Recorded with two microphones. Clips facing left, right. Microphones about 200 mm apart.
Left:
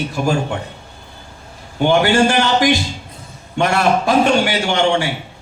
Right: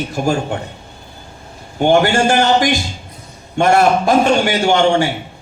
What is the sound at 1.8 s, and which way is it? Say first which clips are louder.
A man's voice: right 1 dB; 50° right (ahead or behind).